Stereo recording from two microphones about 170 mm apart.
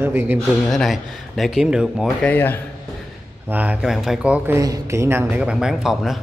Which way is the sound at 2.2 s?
10° left (ahead or behind).